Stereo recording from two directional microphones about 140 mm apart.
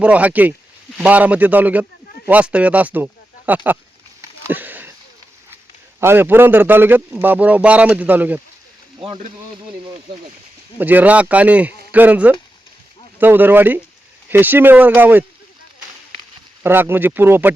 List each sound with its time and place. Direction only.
0.0 s a man's voice: 10° right (ahead or behind)
4.4 s a sound: 15° right (ahead or behind)
6.0 s a man's voice: 15° right (ahead or behind)
9.0 s speech: 40° right (ahead or behind)
10.8 s a man's voice: 10° right (ahead or behind)
16.6 s a man's voice: 15° right (ahead or behind)